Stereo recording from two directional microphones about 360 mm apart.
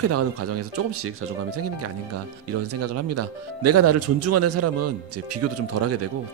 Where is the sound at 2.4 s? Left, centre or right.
Right.